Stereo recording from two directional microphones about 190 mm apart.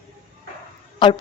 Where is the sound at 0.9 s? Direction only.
25° left (ahead or behind).